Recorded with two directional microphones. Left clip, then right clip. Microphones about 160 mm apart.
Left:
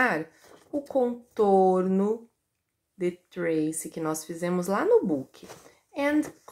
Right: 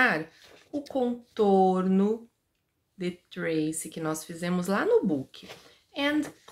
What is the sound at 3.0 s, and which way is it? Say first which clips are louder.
Speech: left 4 dB; 20° right (ahead or behind).